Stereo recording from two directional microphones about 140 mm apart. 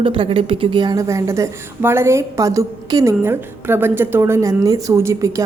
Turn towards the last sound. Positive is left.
turn(degrees=-20)  # may be behind; listen again after turning